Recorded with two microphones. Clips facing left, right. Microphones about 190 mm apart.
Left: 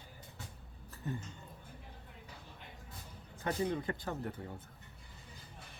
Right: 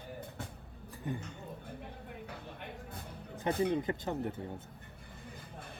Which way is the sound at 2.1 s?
65° right (ahead or behind).